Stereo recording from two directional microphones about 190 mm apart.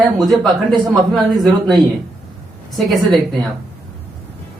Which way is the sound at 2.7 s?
Centre (ahead or behind).